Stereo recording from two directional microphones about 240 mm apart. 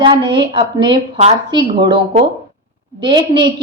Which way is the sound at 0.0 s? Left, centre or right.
Centre.